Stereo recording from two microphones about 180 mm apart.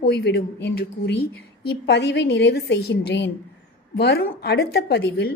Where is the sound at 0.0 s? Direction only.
70° left (ahead or behind).